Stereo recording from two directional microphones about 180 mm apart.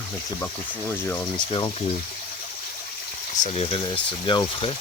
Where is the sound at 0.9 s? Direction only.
10° left (ahead or behind).